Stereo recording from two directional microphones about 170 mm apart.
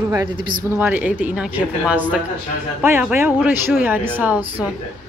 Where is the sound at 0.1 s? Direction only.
20° right (ahead or behind).